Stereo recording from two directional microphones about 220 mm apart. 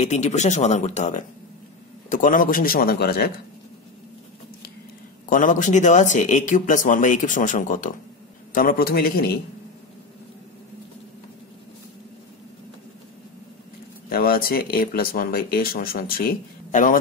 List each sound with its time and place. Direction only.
0.0 s speech: 30° left (ahead or behind)
5.3 s a man's voice: 35° left (ahead or behind)
14.0 s speech: 40° left (ahead or behind)